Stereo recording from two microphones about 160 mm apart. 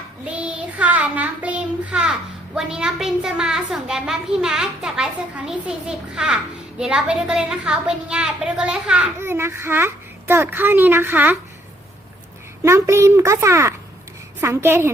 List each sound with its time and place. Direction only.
0.3 s child singing: 10° right (ahead or behind)
2.6 s a child's voice: 5° right (ahead or behind)
12.6 s a child's voice: 15° right (ahead or behind)